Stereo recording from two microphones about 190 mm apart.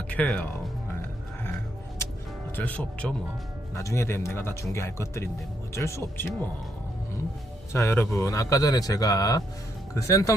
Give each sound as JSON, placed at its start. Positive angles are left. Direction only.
{"t": 0.1, "sound": "speech", "side_deg": 10}
{"t": 2.6, "sound": "speech", "side_deg": 10}
{"t": 7.7, "sound": "speech", "side_deg": 15}